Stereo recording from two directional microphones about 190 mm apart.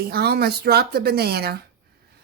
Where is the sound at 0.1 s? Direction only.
55° right (ahead or behind).